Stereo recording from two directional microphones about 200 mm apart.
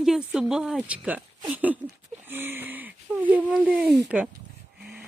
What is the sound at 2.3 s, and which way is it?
Wheeze, 10° right (ahead or behind).